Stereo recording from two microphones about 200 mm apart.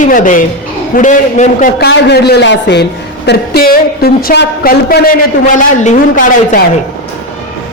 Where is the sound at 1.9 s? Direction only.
55° left (ahead or behind); by 6.6 s 40° left (ahead or behind).